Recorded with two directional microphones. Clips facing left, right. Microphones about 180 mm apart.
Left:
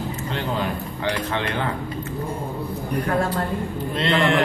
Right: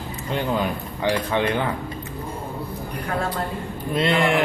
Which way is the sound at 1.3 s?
15° right (ahead or behind).